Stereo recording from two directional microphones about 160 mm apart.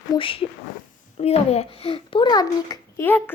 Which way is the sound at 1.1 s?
40° left (ahead or behind).